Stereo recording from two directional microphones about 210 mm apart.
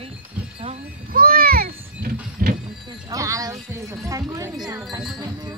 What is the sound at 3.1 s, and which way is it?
Speech, 15° right (ahead or behind).